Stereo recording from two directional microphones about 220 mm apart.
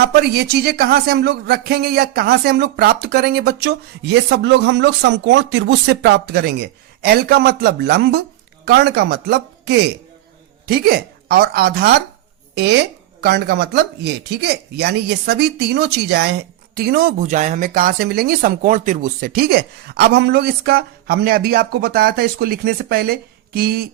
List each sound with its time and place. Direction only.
0.0 s speech: 45° right (ahead or behind)